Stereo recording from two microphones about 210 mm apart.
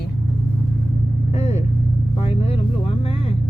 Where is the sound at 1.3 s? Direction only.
30° left (ahead or behind).